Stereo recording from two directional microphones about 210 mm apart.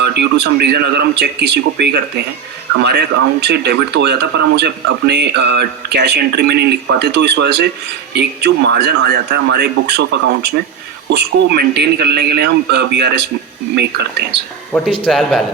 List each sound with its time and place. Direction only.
0.0 s speech: 55° right (ahead or behind)
14.7 s speech: 5° left (ahead or behind)